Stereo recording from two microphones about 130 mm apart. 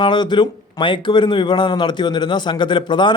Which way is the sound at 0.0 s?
35° left (ahead or behind).